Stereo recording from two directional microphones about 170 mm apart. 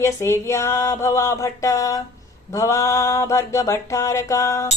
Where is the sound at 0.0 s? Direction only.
15° left (ahead or behind).